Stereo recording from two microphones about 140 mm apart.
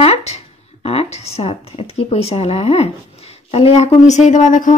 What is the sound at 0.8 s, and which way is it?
A woman's voice, 50° left (ahead or behind).